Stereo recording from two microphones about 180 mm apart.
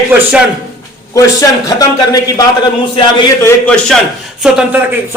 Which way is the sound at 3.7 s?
5° left (ahead or behind).